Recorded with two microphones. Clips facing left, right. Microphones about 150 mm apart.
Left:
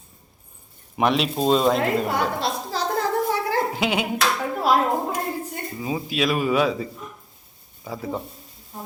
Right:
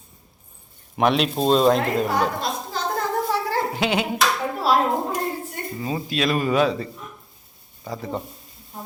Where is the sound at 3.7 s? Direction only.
5° left (ahead or behind).